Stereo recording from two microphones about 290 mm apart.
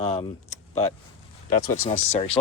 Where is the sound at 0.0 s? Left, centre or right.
Left.